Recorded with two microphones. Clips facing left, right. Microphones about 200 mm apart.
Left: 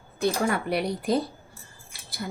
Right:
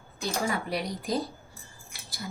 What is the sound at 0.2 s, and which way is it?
Speech, 60° left (ahead or behind).